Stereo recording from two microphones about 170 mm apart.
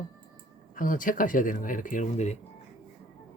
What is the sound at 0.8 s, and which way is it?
Speech, 55° left (ahead or behind).